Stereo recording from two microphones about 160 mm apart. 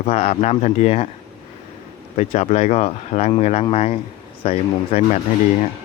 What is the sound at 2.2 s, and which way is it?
Speech, 45° left (ahead or behind).